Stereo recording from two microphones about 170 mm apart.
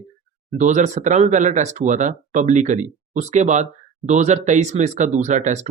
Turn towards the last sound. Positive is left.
turn(degrees=-45)  # may be behind; listen again after turning